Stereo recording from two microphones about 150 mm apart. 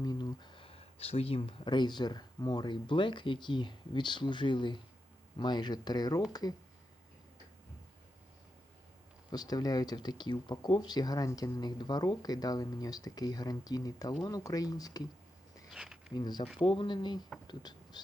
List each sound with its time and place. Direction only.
0.0 s speech: 25° left (ahead or behind)
9.3 s speech: 25° left (ahead or behind)
15.7 s a sound: 5° right (ahead or behind)
16.1 s speech: 30° left (ahead or behind)